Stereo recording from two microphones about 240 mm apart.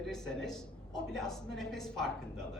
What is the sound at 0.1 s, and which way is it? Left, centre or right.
A woman's voice, centre.